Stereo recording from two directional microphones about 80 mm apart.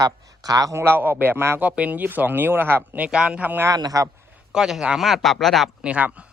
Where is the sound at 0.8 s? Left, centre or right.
Right.